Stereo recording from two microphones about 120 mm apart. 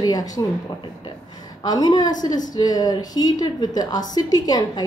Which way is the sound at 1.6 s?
35° left (ahead or behind).